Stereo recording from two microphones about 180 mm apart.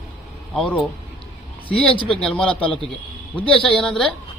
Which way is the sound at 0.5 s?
5° left (ahead or behind).